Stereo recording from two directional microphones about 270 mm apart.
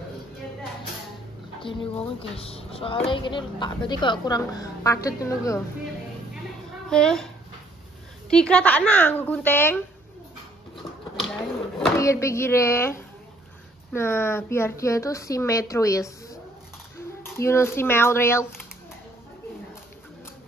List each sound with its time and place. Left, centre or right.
2.3 s speech: left
6.9 s speech: centre
8.3 s speech: centre
11.3 s cupboard open or close: centre
13.9 s speech: centre
17.2 s speech: centre